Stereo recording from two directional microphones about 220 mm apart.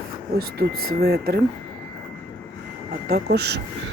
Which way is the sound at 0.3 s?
45° right (ahead or behind).